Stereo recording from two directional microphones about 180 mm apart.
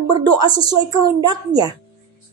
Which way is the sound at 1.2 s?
20° right (ahead or behind).